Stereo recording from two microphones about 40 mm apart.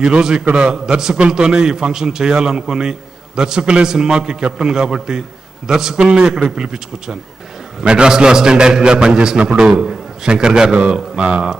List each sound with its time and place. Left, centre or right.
0.0 s a man's voice: centre